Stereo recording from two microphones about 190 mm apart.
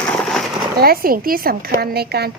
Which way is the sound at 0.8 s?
50° right (ahead or behind).